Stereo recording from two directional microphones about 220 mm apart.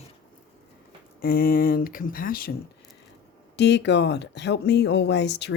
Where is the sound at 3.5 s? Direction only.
50° left (ahead or behind).